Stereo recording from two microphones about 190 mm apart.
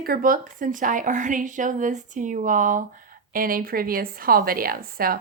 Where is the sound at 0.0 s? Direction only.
50° right (ahead or behind).